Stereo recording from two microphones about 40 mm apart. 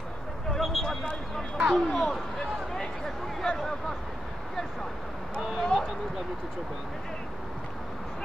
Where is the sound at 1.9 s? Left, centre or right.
Centre.